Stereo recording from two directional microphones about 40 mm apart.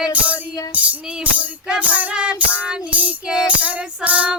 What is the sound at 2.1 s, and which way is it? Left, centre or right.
Music, right.